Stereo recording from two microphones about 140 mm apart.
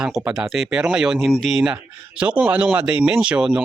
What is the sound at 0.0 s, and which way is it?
Speech, 5° right (ahead or behind).